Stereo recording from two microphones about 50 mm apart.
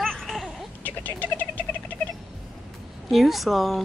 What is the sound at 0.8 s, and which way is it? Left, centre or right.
Cat, left.